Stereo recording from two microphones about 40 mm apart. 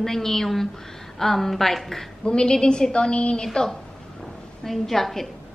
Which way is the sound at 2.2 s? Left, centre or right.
Left.